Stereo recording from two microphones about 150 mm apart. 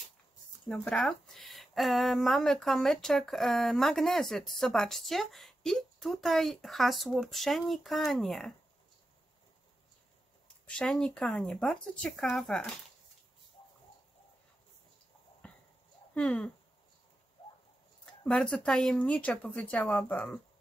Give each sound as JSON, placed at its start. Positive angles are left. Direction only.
{"t": 0.7, "sound": "speech", "side_deg": 0}
{"t": 10.7, "sound": "speech", "side_deg": 5}
{"t": 15.4, "sound": "a sound", "side_deg": 10}
{"t": 16.2, "sound": "speech", "side_deg": 5}
{"t": 17.4, "sound": "a sound", "side_deg": 35}
{"t": 18.2, "sound": "speech", "side_deg": 5}